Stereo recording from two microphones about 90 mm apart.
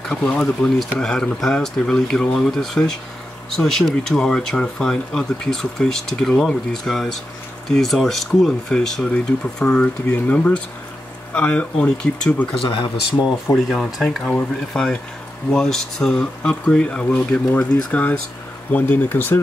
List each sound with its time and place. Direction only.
0.1 s speech: 10° left (ahead or behind)
12.5 s speech: 70° left (ahead or behind)
13.6 s speech: centre (ahead or behind); by 19.4 s 20° left (ahead or behind)